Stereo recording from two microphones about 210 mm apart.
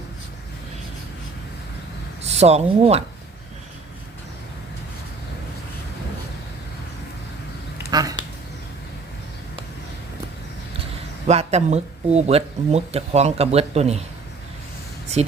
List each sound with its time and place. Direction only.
2.2 s speech: 30° right (ahead or behind)
7.9 s duck: 15° right (ahead or behind)
11.3 s speech: 30° right (ahead or behind)